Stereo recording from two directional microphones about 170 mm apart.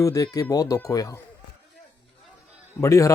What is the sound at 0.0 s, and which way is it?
Speech, 20° left (ahead or behind).